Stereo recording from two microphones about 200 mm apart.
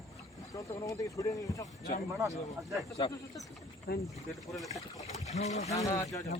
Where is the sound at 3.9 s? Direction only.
55° left (ahead or behind).